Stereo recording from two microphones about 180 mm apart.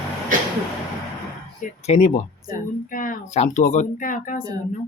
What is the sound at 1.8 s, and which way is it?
Speech, 35° left (ahead or behind).